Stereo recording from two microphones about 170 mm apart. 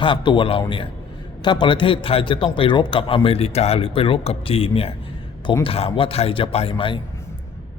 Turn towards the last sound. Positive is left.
turn(degrees=30)  # may be behind; listen again after turning